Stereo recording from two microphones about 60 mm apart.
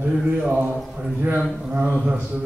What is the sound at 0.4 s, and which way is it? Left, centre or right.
Mantra, right.